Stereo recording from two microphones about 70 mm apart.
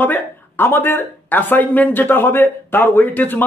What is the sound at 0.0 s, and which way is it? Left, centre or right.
A man's voice, left.